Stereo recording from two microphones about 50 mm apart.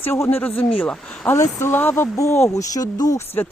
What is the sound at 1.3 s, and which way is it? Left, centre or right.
Speech, left.